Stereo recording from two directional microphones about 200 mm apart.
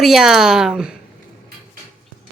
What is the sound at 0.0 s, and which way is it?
Speech, centre (ahead or behind).